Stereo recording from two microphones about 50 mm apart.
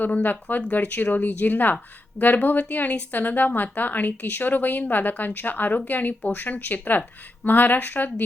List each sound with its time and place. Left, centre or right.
0.0 s a woman's voice: left